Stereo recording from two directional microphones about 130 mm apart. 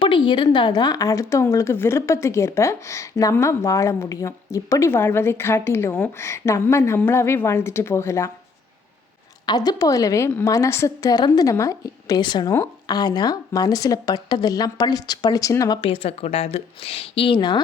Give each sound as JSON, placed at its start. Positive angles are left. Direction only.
{"t": 0.0, "sound": "a woman's voice", "side_deg": 40}
{"t": 9.5, "sound": "a woman's voice", "side_deg": 30}
{"t": 15.8, "sound": "a woman's voice", "side_deg": 45}